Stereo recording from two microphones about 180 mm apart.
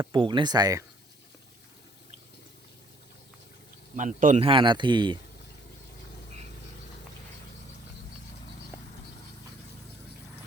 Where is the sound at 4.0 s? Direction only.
45° right (ahead or behind).